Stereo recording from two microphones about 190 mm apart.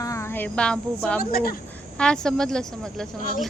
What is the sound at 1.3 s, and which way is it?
Speech, 50° left (ahead or behind).